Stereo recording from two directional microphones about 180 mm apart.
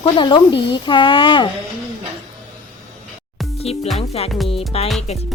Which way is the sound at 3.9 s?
35° left (ahead or behind).